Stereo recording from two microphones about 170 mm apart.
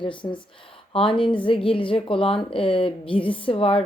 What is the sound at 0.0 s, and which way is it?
A woman's voice, 30° left (ahead or behind).